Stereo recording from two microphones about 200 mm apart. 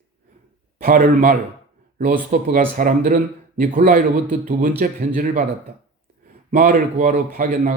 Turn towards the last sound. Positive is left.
turn(degrees=-45)  # may be behind; listen again after turning